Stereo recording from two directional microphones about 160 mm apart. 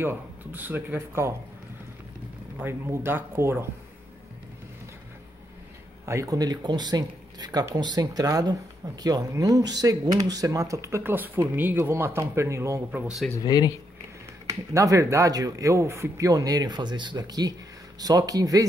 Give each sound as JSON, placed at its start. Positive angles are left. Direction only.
{"t": 0.0, "sound": "speech", "side_deg": -15}
{"t": 2.6, "sound": "speech", "side_deg": -15}
{"t": 6.0, "sound": "speech", "side_deg": -20}
{"t": 12.9, "sound": "speech", "side_deg": -5}
{"t": 13.4, "sound": "speech", "side_deg": 25}
{"t": 14.5, "sound": "speech", "side_deg": -20}